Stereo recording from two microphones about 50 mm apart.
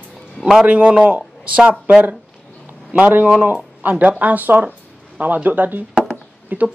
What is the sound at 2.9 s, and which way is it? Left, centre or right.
Speech, right.